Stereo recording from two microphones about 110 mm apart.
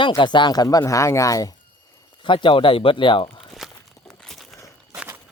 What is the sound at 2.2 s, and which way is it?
Speech, 50° left (ahead or behind).